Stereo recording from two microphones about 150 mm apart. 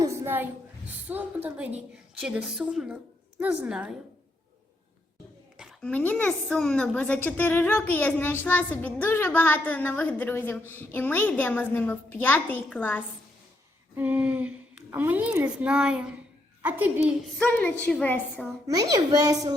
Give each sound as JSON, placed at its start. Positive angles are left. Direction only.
{"t": 0.0, "sound": "a sound", "side_deg": -15}
{"t": 1.0, "sound": "a woman's voice", "side_deg": -10}
{"t": 5.8, "sound": "a woman's voice", "side_deg": 10}
{"t": 13.9, "sound": "a woman's voice", "side_deg": -10}
{"t": 17.3, "sound": "a woman's voice", "side_deg": 10}
{"t": 18.7, "sound": "a child's voice", "side_deg": -25}